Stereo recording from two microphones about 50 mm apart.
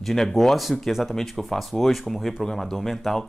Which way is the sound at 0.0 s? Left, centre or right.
Centre.